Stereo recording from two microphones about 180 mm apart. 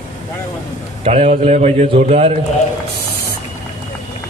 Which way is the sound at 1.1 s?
35° right (ahead or behind).